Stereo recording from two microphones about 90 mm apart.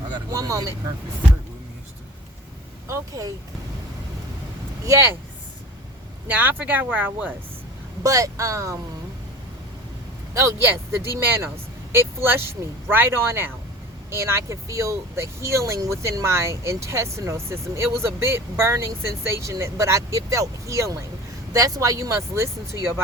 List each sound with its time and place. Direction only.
0.3 s speech: 35° right (ahead or behind)
2.8 s speech: 40° right (ahead or behind)
4.9 s speech: 30° right (ahead or behind)
6.2 s speech: 20° right (ahead or behind)
8.0 s speech: 40° right (ahead or behind)
10.3 s speech: 30° right (ahead or behind)